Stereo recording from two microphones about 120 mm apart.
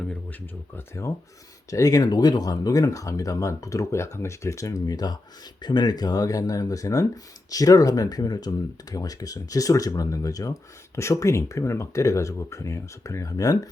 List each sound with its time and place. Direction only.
1.7 s speech: 30° left (ahead or behind)